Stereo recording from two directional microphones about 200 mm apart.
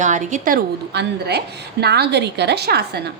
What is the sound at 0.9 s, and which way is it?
A woman's voice, 55° right (ahead or behind).